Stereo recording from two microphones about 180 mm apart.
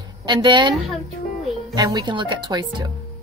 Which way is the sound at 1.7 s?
20° right (ahead or behind).